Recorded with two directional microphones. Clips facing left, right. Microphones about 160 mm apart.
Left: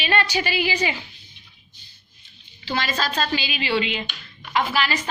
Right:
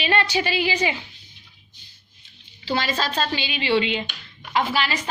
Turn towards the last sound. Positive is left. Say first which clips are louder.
# even
turn(degrees=-30)  # may be behind; listen again after turning